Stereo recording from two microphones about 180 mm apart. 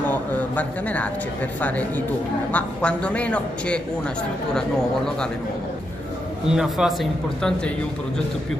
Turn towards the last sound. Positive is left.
turn(degrees=0)  # may be behind; listen again after turning